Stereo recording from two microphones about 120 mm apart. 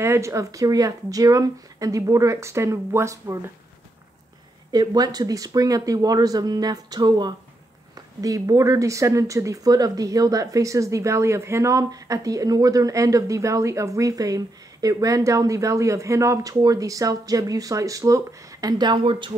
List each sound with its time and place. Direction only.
0.0 s speech: 20° right (ahead or behind)
4.7 s speech: 35° right (ahead or behind)